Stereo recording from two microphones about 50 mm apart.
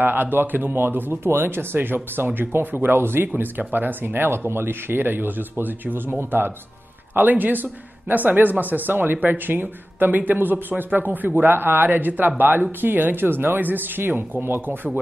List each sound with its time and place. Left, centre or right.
0.0 s speech: right